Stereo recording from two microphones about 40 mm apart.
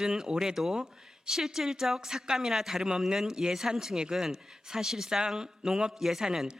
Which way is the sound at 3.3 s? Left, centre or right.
Centre.